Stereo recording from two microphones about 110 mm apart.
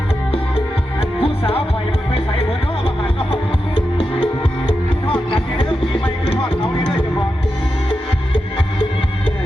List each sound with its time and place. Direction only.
1.2 s music: 60° left (ahead or behind)